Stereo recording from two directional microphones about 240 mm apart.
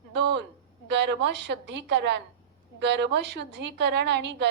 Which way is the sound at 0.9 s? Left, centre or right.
Right.